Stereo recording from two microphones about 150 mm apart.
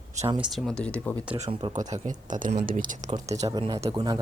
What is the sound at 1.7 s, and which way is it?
Speech, 50° right (ahead or behind).